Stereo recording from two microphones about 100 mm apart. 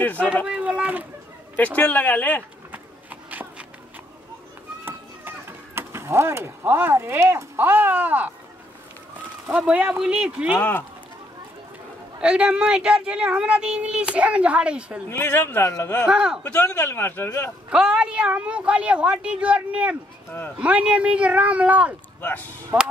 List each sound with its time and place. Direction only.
0.0 s speech: 15° left (ahead or behind)
0.5 s a woman's voice: 10° right (ahead or behind)
1.8 s speech: 15° left (ahead or behind)
2.7 s a sound: 15° right (ahead or behind)
5.8 s speech: 25° right (ahead or behind)
9.5 s a woman's voice: 15° right (ahead or behind)
10.6 s speech: 15° left (ahead or behind)
12.2 s a woman's voice: 10° right (ahead or behind)
15.0 s a man's voice: 25° left (ahead or behind)
16.1 s a woman's voice: 10° right (ahead or behind)
16.4 s a man's voice: 20° left (ahead or behind)
17.6 s a woman's voice: 10° right (ahead or behind)
22.2 s a man's voice: 20° left (ahead or behind)
22.7 s speech: 30° right (ahead or behind)